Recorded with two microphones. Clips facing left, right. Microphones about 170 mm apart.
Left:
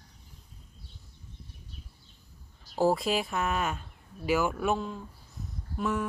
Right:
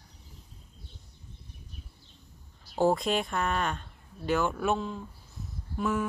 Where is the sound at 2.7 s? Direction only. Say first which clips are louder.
Even; centre (ahead or behind).